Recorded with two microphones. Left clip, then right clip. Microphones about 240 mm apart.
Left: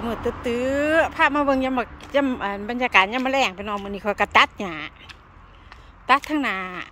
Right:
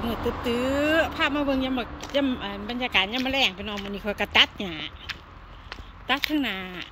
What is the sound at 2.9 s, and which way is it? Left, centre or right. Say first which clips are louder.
Speech: left 6 dB; centre.